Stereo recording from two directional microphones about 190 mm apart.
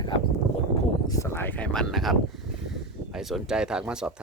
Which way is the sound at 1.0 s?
15° left (ahead or behind).